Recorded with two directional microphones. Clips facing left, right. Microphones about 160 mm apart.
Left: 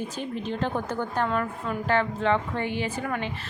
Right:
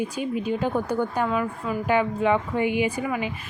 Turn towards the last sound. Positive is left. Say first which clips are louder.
# right 3 dB
turn(degrees=-10)  # may be behind; listen again after turning